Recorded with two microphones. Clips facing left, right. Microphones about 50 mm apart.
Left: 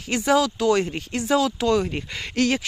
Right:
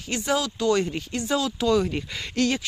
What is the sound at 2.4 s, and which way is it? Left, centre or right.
Speech, left.